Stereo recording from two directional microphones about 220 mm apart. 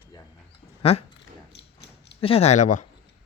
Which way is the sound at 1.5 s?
50° left (ahead or behind).